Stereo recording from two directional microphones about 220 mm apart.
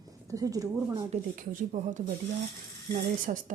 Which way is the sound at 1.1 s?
35° right (ahead or behind).